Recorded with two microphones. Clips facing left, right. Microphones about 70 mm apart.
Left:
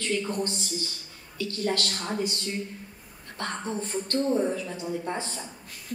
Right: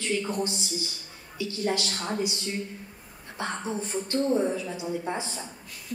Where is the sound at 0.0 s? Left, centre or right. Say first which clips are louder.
Even; centre.